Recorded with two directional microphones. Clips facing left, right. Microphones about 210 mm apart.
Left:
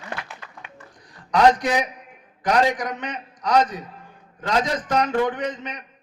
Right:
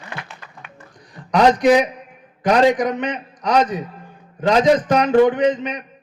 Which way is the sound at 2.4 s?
20° right (ahead or behind).